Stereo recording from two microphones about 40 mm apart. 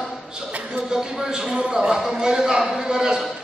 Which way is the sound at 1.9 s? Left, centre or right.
Centre.